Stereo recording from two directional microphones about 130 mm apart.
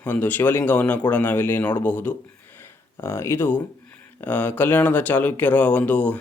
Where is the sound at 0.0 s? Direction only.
15° left (ahead or behind).